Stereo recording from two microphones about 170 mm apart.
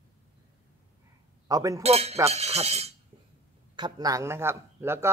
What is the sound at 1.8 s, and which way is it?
Speech, 35° right (ahead or behind).